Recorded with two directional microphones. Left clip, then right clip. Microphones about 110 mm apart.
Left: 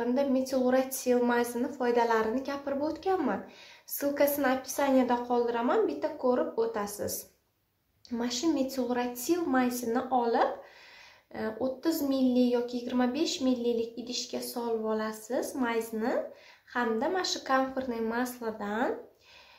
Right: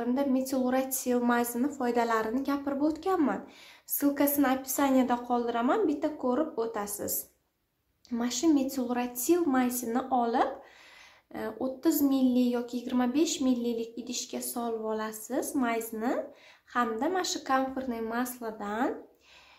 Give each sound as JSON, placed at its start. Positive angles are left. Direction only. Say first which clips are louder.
{"t": 0.0, "sound": "a woman's voice", "louder": "left 1 dB", "side_deg": -30}
{"t": 4.0, "sound": "a woman's voice", "louder": "even", "side_deg": -30}